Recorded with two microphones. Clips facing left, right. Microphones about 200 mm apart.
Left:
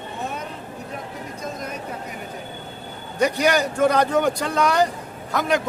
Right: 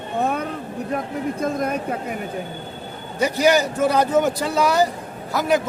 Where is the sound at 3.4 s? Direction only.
5° right (ahead or behind).